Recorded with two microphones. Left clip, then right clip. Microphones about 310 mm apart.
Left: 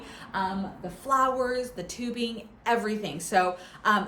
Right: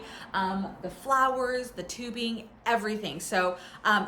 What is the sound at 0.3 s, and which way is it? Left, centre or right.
A woman's voice, centre.